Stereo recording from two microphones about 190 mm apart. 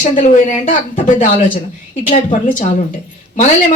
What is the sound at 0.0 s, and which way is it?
A woman's voice, 40° left (ahead or behind).